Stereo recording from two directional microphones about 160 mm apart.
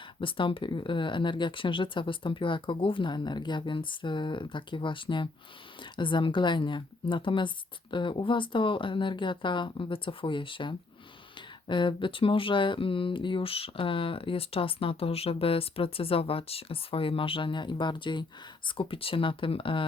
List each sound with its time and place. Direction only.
0.2 s speech: 30° left (ahead or behind)